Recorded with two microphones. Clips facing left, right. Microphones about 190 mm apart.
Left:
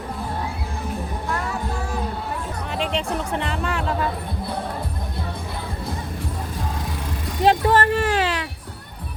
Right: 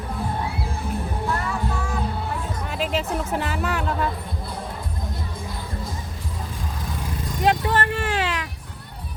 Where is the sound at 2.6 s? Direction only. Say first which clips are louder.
Left 1 dB; centre (ahead or behind).